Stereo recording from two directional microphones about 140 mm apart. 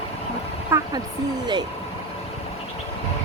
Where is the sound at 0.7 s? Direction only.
20° right (ahead or behind).